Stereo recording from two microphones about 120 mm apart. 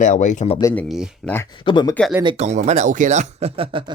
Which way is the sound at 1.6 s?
40° left (ahead or behind).